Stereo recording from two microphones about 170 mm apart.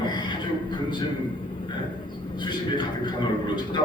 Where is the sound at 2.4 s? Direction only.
25° left (ahead or behind).